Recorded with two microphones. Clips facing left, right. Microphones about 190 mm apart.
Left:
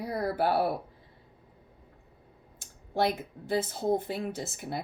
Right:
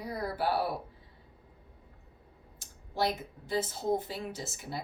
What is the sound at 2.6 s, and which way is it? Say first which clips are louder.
Speech: left 4 dB; 55° left (ahead or behind).